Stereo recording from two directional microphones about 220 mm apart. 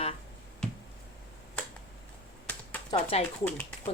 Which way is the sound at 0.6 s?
5° left (ahead or behind).